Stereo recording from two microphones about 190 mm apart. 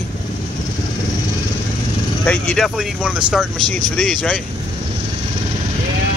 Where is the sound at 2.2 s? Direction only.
5° left (ahead or behind).